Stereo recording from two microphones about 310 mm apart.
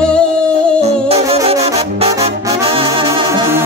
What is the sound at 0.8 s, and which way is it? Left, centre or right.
Brass instrument, centre.